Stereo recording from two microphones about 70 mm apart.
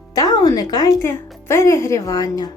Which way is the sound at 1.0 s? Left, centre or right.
Left.